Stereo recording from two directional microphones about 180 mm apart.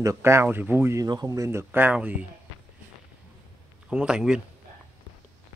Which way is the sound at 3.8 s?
5° right (ahead or behind).